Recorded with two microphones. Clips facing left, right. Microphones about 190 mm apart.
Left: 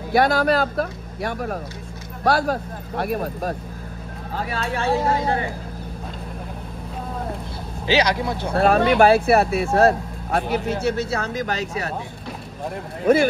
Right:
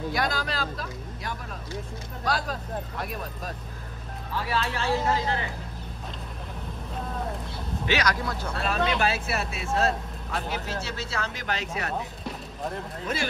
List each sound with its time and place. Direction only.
0.1 s speech: 65° left (ahead or behind)
7.9 s speech: 30° left (ahead or behind)
8.5 s speech: 60° left (ahead or behind); by 11.7 s 45° left (ahead or behind)
13.0 s speech: 55° left (ahead or behind)